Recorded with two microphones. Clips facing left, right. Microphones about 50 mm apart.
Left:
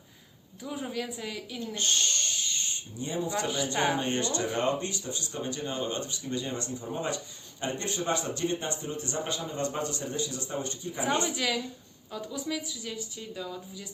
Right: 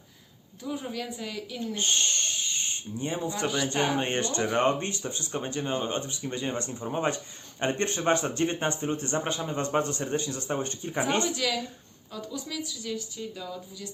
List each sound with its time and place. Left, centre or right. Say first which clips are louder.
0.6 s a woman's voice: right 1 dB; centre
1.7 s speech: right 1 dB; right
2.6 s speech: right 4 dB; right
3.4 s speech: right 3 dB; right
11.2 s speech: right 1 dB; centre